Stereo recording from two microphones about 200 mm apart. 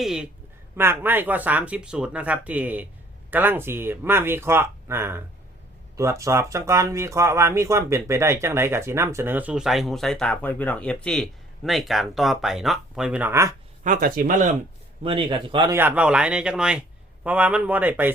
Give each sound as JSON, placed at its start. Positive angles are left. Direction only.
{"t": 0.0, "sound": "a sound", "side_deg": 0}
{"t": 0.8, "sound": "speech", "side_deg": -10}
{"t": 13.8, "sound": "speech", "side_deg": -40}
{"t": 15.0, "sound": "speech", "side_deg": -25}
{"t": 15.8, "sound": "speech", "side_deg": -10}